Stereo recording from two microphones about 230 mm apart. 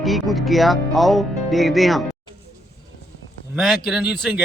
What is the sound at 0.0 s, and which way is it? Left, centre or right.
Speech, centre.